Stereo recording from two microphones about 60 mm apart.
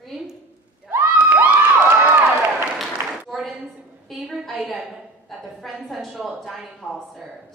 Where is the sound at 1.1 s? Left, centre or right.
Right.